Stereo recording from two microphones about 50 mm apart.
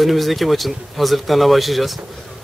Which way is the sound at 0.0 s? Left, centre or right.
Centre.